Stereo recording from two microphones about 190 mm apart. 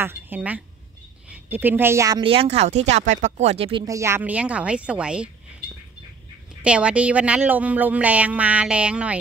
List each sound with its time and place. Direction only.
0.0 s a woman's voice: 10° right (ahead or behind); by 3.8 s 30° right (ahead or behind)
3.8 s a woman's voice: 15° right (ahead or behind)
6.6 s a woman's voice: 5° right (ahead or behind)